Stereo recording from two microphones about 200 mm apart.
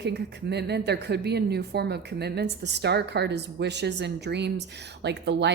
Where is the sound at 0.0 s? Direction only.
55° right (ahead or behind).